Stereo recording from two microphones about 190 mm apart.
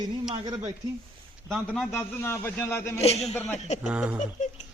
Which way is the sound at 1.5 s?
5° left (ahead or behind).